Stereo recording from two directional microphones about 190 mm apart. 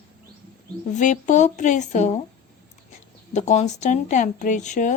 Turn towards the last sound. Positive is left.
turn(degrees=40)  # may be behind; listen again after turning